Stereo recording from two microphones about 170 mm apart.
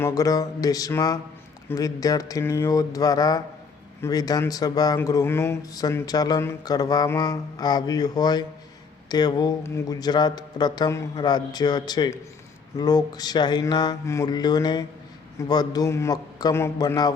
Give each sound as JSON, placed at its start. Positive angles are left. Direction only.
{"t": 0.0, "sound": "speech", "side_deg": 20}